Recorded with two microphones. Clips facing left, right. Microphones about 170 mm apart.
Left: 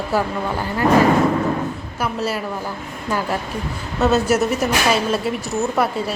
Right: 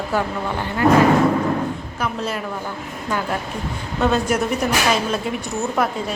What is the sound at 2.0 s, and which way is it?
Speech, 5° left (ahead or behind).